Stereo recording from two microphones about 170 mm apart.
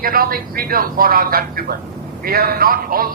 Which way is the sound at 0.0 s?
60° right (ahead or behind).